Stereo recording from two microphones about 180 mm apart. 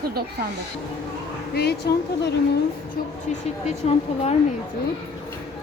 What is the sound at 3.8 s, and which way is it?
Speech, 40° left (ahead or behind).